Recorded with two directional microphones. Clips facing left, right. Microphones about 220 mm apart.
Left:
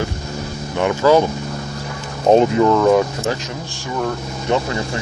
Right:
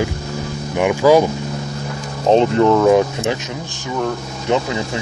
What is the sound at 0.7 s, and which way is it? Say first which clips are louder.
Speech: right 2 dB; 15° right (ahead or behind).